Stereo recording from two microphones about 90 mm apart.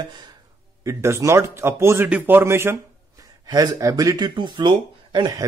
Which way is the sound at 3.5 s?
40° right (ahead or behind).